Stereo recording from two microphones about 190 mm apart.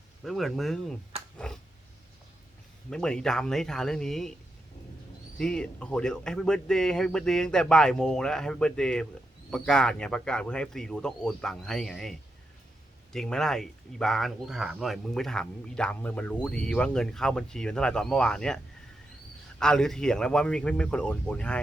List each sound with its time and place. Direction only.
0.3 s speech: centre (ahead or behind)
1.4 s a sound: 5° left (ahead or behind)
2.9 s speech: 5° left (ahead or behind)
5.4 s speech: 5° left (ahead or behind)
13.1 s speech: 5° left (ahead or behind)